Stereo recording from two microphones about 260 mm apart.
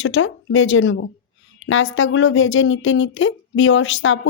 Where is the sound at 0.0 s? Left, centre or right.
Left.